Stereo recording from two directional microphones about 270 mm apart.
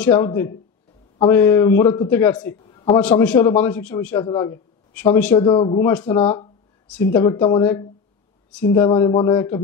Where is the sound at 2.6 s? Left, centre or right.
Centre.